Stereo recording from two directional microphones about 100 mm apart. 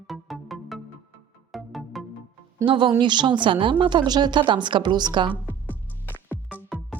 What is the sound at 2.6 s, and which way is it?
A woman's voice, 55° right (ahead or behind).